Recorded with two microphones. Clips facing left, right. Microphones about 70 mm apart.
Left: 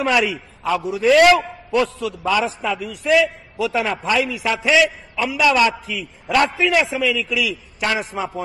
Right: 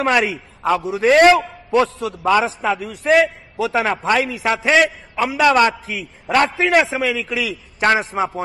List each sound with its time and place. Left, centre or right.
0.0 s a man's voice: right
2.0 s a man's voice: right
2.4 s a man's voice: right